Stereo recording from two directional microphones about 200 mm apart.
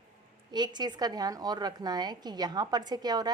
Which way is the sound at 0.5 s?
20° right (ahead or behind).